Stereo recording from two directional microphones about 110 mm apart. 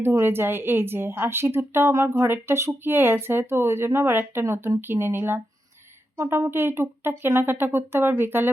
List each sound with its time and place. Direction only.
0.0 s a woman's voice: 20° right (ahead or behind)